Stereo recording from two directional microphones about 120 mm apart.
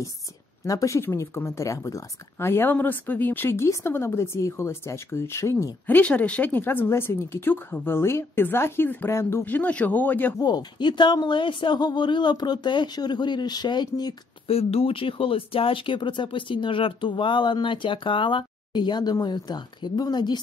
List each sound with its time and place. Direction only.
0.7 s speech: 30° left (ahead or behind)
5.9 s a woman's voice: 10° left (ahead or behind)
10.4 s speech: 35° left (ahead or behind)
14.5 s speech: 55° left (ahead or behind); by 20.3 s 35° left (ahead or behind)